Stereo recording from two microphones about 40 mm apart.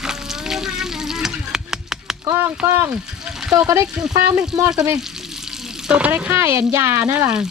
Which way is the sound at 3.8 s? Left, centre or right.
Right.